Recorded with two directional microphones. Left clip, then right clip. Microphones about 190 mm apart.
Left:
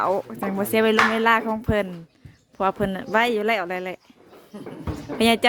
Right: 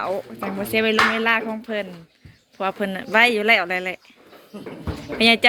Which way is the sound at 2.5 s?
25° left (ahead or behind).